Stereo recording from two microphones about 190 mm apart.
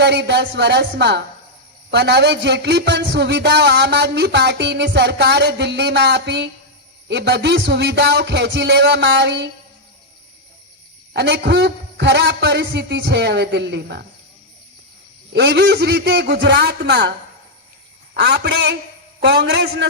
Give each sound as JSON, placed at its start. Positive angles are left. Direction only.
{"t": 0.0, "sound": "a man's voice", "side_deg": -65}
{"t": 11.1, "sound": "a man's voice", "side_deg": -65}
{"t": 15.3, "sound": "a man's voice", "side_deg": -65}